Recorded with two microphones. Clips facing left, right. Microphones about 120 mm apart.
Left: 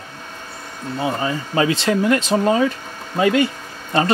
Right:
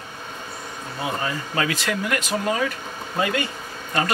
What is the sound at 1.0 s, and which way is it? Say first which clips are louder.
Speech: left 4 dB; 25° left (ahead or behind).